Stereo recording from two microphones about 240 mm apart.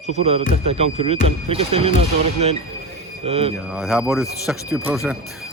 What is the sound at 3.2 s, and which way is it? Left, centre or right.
Speech, right.